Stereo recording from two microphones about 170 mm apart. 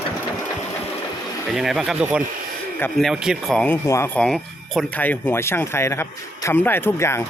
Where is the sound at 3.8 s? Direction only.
15° left (ahead or behind).